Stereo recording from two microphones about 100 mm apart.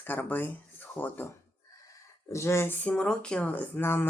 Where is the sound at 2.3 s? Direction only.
30° left (ahead or behind).